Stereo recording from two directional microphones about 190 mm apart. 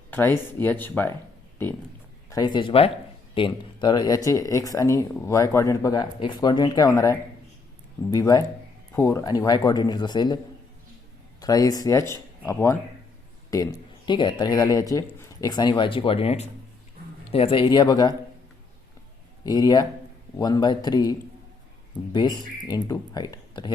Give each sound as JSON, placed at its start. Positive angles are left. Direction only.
{"t": 0.1, "sound": "speech", "side_deg": 10}
{"t": 2.3, "sound": "speech", "side_deg": 20}
{"t": 11.3, "sound": "speech", "side_deg": 20}
{"t": 19.5, "sound": "speech", "side_deg": 20}